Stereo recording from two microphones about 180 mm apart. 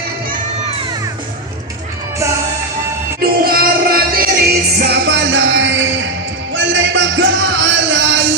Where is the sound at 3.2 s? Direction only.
55° right (ahead or behind); by 8.2 s 85° right.